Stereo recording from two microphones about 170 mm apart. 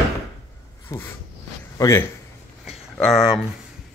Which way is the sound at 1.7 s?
20° left (ahead or behind).